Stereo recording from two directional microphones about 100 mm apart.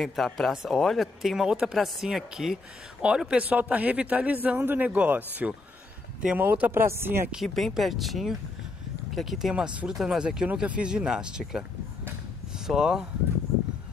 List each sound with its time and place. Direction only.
0.0 s speech: centre (ahead or behind); by 7.2 s 25° right (ahead or behind)
7.2 s speech: centre (ahead or behind)